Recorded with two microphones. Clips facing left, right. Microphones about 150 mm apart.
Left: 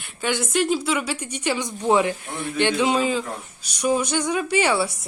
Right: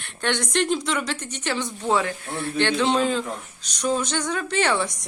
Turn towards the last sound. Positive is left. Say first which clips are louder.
# left 2 dB
turn(degrees=10)  # may be behind; listen again after turning